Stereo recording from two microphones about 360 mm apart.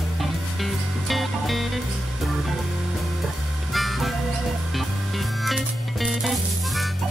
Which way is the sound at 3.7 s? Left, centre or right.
Centre.